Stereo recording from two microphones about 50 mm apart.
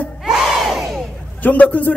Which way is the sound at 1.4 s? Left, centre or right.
Left.